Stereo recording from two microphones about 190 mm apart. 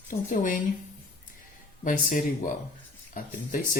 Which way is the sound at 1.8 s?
45° left (ahead or behind).